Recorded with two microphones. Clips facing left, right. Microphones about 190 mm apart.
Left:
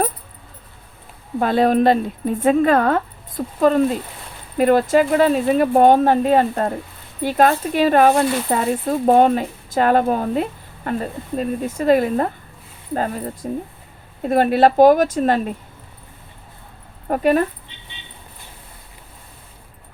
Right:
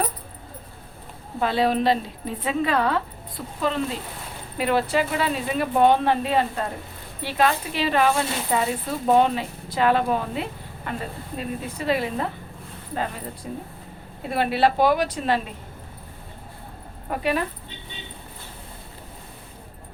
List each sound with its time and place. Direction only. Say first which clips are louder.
1.4 s speech: left 6 dB; 50° left (ahead or behind)
17.1 s speech: left 8 dB; 45° left (ahead or behind)